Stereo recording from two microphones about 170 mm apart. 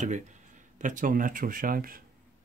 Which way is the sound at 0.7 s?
50° right (ahead or behind).